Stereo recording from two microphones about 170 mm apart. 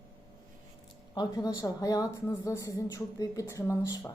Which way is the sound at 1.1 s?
25° left (ahead or behind).